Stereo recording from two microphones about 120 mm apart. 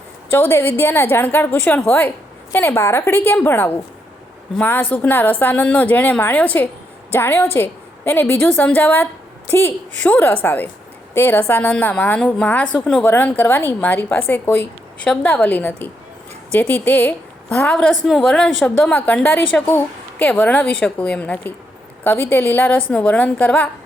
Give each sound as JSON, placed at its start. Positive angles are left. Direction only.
{"t": 0.3, "sound": "a woman's voice", "side_deg": 20}